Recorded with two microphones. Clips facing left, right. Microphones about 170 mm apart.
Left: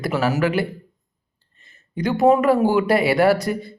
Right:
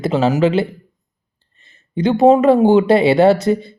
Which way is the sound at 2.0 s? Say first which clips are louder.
Right 5 dB; 25° right (ahead or behind).